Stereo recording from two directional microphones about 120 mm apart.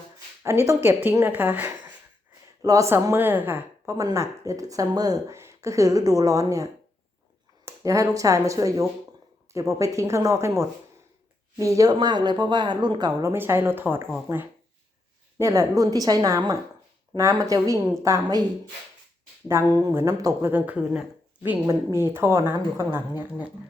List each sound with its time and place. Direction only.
0.4 s speech: 20° right (ahead or behind)
2.6 s speech: 25° right (ahead or behind)
3.9 s speech: 25° right (ahead or behind)
13.3 s speech: 20° right (ahead or behind)
19.5 s speech: 20° right (ahead or behind)